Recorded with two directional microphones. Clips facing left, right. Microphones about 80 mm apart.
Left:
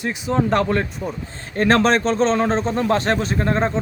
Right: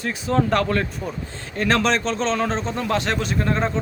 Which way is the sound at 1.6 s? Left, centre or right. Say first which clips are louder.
Left 4 dB; left.